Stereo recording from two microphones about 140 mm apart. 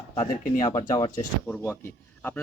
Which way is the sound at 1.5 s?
10° left (ahead or behind).